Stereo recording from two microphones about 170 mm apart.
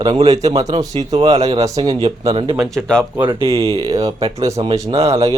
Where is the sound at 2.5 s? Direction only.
10° right (ahead or behind).